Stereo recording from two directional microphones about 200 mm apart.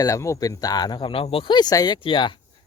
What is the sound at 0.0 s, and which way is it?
Speech, 15° left (ahead or behind).